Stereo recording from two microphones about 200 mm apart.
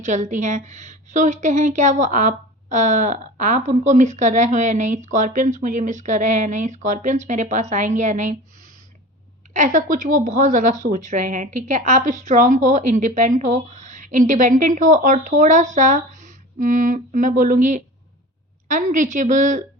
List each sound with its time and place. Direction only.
0.0 s a woman's voice: 35° right (ahead or behind)
9.5 s a woman's voice: 40° right (ahead or behind)